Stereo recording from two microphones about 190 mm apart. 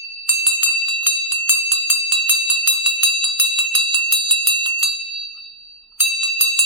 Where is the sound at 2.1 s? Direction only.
25° right (ahead or behind).